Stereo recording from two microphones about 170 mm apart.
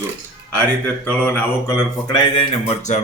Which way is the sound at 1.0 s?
10° left (ahead or behind).